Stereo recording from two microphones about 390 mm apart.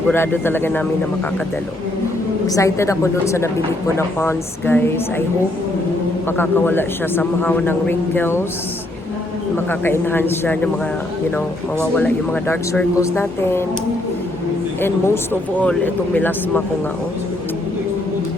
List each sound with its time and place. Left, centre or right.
0.1 s a man's voice: centre
2.5 s a woman's voice: centre
6.2 s a man's voice: centre
9.6 s a man's voice: centre
11.9 s a man's voice: centre
14.8 s a man's voice: centre